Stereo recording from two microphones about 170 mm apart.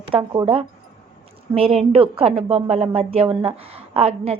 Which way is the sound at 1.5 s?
35° right (ahead or behind).